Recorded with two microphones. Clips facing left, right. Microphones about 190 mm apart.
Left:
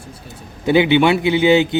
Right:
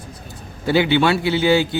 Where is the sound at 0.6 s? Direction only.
20° left (ahead or behind).